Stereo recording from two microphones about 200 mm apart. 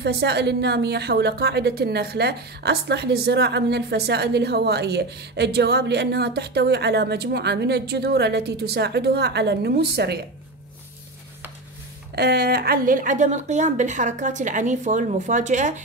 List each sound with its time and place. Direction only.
0.0 s a woman's voice: 55° right (ahead or behind)
12.2 s a woman's voice: 55° right (ahead or behind); by 15.8 s 35° right (ahead or behind)